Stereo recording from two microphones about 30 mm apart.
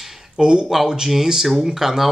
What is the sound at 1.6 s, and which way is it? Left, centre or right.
Speech, centre.